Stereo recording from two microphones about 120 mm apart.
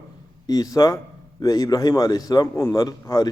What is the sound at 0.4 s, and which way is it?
A man's voice, 30° left (ahead or behind).